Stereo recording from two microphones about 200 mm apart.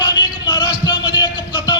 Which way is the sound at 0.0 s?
20° left (ahead or behind).